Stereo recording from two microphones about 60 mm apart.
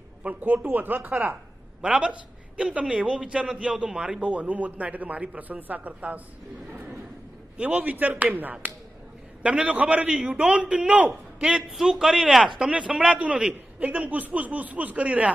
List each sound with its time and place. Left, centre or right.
0.2 s a man's voice: right
1.8 s a woman's voice: centre
7.5 s a man's voice: right
11.7 s a man's voice: centre
12.5 s a man's voice: centre